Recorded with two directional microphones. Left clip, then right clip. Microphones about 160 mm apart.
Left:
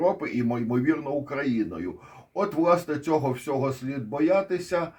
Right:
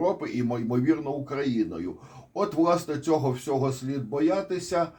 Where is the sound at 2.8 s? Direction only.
30° left (ahead or behind).